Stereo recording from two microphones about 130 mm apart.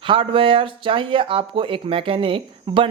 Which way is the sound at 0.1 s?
40° right (ahead or behind).